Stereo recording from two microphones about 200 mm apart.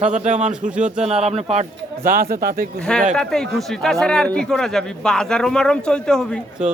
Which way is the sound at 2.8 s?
5° left (ahead or behind).